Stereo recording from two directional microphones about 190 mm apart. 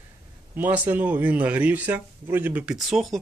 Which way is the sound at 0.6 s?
10° right (ahead or behind).